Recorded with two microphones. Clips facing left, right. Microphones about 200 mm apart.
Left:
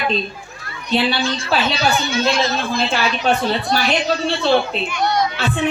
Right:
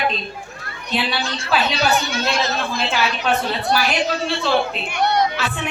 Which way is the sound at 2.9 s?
30° left (ahead or behind).